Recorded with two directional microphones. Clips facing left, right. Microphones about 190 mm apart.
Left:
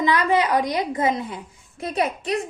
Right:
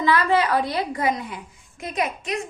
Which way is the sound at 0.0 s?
20° left (ahead or behind).